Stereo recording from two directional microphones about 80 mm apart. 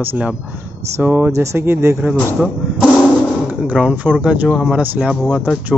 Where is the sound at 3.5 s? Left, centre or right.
Centre.